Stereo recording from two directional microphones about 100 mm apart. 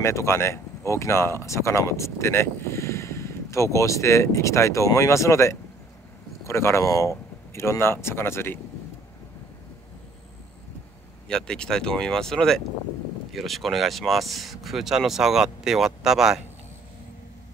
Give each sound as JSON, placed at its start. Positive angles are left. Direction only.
{"t": 0.0, "sound": "speech", "side_deg": 25}
{"t": 11.2, "sound": "speech", "side_deg": 5}